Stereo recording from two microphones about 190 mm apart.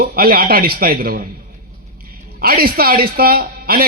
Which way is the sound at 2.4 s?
50° right (ahead or behind).